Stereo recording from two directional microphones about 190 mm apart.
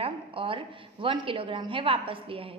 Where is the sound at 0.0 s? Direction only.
30° right (ahead or behind).